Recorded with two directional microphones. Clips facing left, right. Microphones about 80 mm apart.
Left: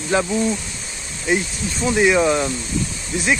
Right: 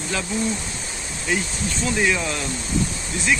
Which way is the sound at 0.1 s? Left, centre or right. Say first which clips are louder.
Left 10 dB; left.